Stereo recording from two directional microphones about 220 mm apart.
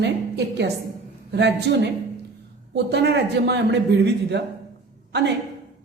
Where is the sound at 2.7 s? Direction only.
50° right (ahead or behind).